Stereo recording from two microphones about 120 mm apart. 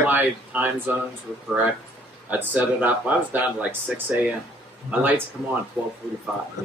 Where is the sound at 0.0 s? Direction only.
15° right (ahead or behind).